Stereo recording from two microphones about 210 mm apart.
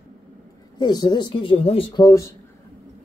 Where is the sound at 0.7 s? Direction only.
20° left (ahead or behind).